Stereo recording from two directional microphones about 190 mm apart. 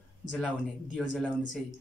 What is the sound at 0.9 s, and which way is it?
Speech, 5° left (ahead or behind).